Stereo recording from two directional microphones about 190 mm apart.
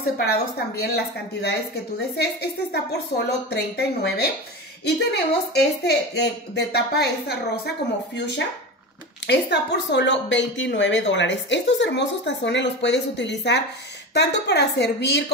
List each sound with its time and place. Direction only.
0.0 s speech: 55° left (ahead or behind)
9.3 s a woman's voice: 65° left (ahead or behind)